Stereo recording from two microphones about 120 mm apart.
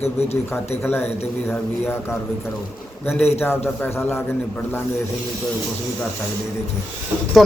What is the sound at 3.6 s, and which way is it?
A man's voice, 20° left (ahead or behind).